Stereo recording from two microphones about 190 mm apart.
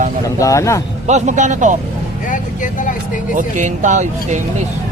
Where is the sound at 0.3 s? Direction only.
15° left (ahead or behind).